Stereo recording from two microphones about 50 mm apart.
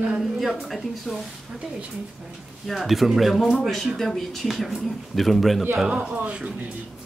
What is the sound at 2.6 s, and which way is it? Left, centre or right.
A man's voice, centre.